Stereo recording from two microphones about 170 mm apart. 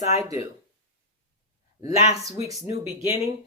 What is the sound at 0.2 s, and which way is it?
Speech, 20° right (ahead or behind).